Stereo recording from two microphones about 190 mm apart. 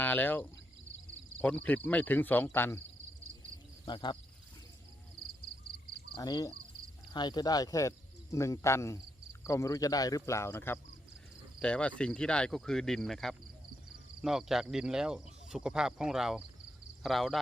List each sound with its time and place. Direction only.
0.0 s speech: 10° left (ahead or behind)
3.8 s speech: 25° left (ahead or behind)
6.1 s speech: 20° left (ahead or behind); by 17.4 s centre (ahead or behind)